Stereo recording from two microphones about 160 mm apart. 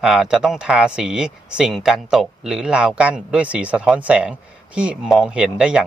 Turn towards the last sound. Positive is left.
turn(degrees=-5)  # may be behind; listen again after turning